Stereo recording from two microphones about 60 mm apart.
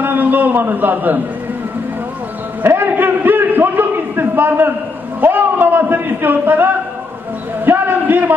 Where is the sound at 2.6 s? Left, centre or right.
Right.